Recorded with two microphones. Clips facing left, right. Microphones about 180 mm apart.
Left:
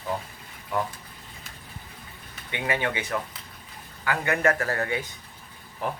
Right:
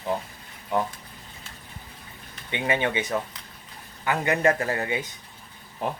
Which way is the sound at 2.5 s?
20° right (ahead or behind).